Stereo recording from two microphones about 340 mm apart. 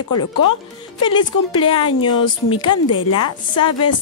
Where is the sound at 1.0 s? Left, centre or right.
Centre.